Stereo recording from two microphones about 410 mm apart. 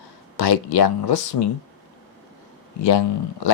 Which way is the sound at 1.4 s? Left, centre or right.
Left.